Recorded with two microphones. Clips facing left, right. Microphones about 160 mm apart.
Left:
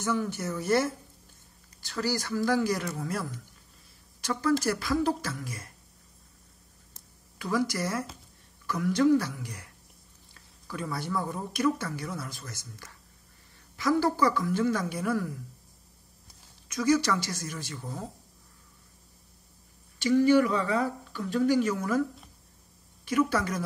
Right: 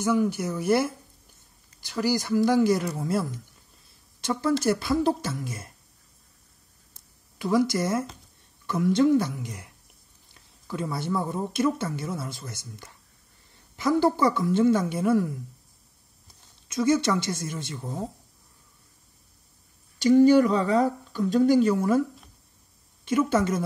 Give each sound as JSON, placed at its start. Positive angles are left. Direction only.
{"t": 0.0, "sound": "speech", "side_deg": -10}
{"t": 7.3, "sound": "speech", "side_deg": -20}
{"t": 16.6, "sound": "speech", "side_deg": -25}
{"t": 20.2, "sound": "speech", "side_deg": -35}
{"t": 23.0, "sound": "speech", "side_deg": -25}